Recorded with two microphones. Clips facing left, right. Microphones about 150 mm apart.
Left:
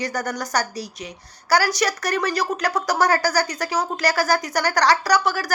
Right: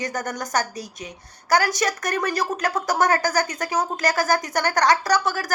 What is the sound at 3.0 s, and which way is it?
Speech, 35° left (ahead or behind).